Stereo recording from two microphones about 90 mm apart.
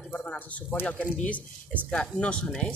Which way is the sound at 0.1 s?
15° left (ahead or behind).